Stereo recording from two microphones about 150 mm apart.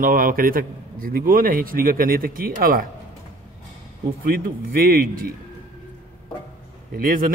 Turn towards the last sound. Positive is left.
turn(degrees=-70)  # may be behind; listen again after turning